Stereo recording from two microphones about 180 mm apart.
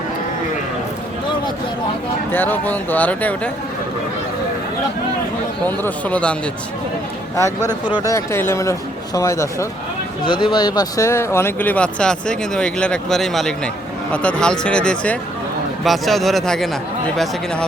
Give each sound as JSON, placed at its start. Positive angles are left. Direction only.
{"t": 2.3, "sound": "speech", "side_deg": 10}
{"t": 5.6, "sound": "speech", "side_deg": 10}
{"t": 7.7, "sound": "speech", "side_deg": 25}
{"t": 10.2, "sound": "speech", "side_deg": 25}